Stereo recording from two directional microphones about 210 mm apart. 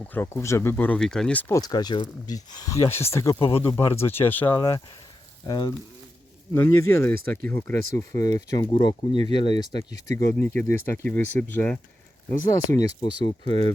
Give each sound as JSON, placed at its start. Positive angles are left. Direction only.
{"t": 0.0, "sound": "speech", "side_deg": 10}
{"t": 3.3, "sound": "speech", "side_deg": 25}
{"t": 12.5, "sound": "speech", "side_deg": 20}